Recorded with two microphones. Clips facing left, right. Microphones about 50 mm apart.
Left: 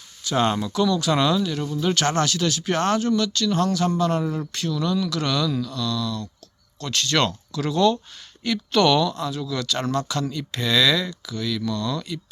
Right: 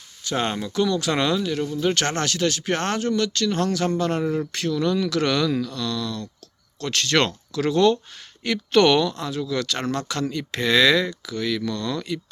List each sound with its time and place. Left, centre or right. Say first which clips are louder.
0.3 s speech: left 3 dB; right
0.7 s speech: left 1 dB; right
1.2 s speech: left 1 dB; right
2.0 s speech: left 1 dB; right
3.7 s speech: left 1 dB; right
4.2 s speech: right 3 dB; right
4.7 s speech: right 2 dB; right
5.0 s speech: right 2 dB; right
5.5 s speech: right 1 dB; right